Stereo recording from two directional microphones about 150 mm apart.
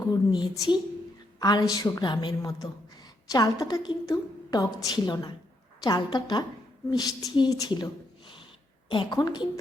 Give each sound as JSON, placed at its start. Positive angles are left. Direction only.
{"t": 0.0, "sound": "a woman's voice", "side_deg": 30}
{"t": 8.9, "sound": "a woman's voice", "side_deg": 30}